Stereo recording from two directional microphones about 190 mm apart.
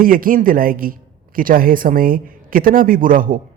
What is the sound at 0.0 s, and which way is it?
A woman's voice, 50° right (ahead or behind).